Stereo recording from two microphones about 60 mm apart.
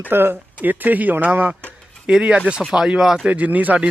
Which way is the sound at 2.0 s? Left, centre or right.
Centre.